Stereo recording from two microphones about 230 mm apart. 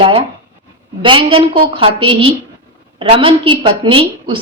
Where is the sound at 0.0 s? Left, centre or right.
Right.